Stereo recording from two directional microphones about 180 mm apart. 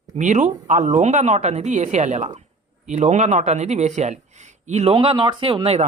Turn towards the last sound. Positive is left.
turn(degrees=-35)  # may be behind; listen again after turning